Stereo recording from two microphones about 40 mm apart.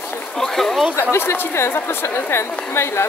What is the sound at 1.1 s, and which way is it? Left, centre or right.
A woman's voice, left.